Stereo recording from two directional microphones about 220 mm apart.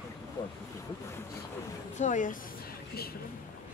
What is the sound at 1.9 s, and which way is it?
Speech, 35° left (ahead or behind).